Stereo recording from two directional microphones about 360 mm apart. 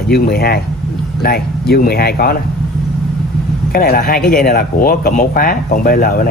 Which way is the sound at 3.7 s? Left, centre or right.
Left.